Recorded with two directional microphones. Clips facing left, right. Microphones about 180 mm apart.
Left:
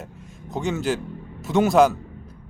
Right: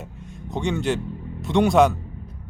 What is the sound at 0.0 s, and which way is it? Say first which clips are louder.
Speech: right 2 dB; centre (ahead or behind).